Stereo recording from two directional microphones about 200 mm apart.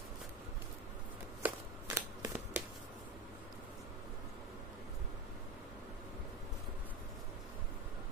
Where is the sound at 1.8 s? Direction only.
15° right (ahead or behind).